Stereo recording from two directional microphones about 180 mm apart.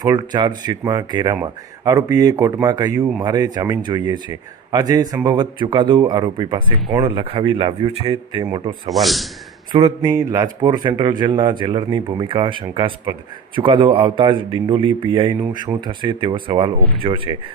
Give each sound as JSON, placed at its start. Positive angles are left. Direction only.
{"t": 0.0, "sound": "speech", "side_deg": -20}
{"t": 8.9, "sound": "a man's voice", "side_deg": 0}
{"t": 9.7, "sound": "speech", "side_deg": -25}